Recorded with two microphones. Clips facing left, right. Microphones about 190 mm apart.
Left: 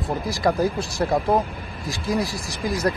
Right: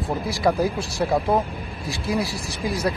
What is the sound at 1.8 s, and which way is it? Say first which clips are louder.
Speech: left 1 dB; 35° right (ahead or behind).